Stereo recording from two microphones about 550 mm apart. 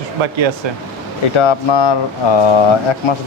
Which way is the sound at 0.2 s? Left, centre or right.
Right.